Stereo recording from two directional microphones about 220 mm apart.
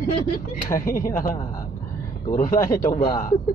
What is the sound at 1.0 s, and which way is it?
Speech, 15° left (ahead or behind).